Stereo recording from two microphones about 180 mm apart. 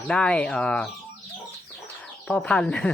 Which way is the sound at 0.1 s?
5° left (ahead or behind).